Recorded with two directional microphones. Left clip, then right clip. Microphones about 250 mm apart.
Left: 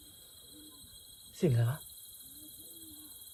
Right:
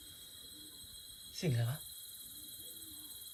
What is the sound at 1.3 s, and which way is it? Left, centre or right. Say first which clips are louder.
Speech: left 7 dB; left.